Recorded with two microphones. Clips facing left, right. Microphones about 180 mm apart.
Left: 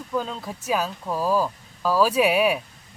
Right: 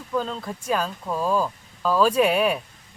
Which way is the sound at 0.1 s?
5° left (ahead or behind).